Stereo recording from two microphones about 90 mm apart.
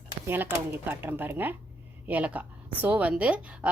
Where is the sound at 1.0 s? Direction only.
20° right (ahead or behind).